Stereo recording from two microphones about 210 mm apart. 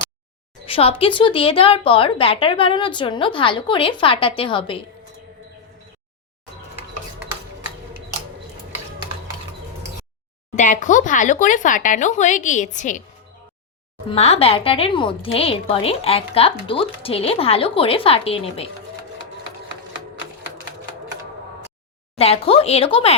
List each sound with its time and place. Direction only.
0.6 s a woman's voice: 25° left (ahead or behind)
10.5 s speech: 35° left (ahead or behind)
14.1 s a woman's voice: 30° left (ahead or behind)
22.2 s a woman's voice: 30° left (ahead or behind)